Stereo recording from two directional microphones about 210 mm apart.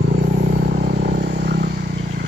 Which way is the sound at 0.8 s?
30° right (ahead or behind).